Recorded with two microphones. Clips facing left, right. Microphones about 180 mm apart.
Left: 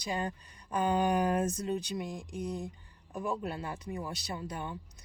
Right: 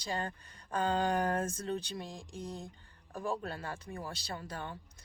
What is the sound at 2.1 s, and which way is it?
Speech, 65° left (ahead or behind).